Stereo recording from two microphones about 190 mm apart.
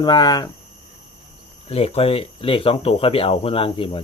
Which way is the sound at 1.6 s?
30° left (ahead or behind).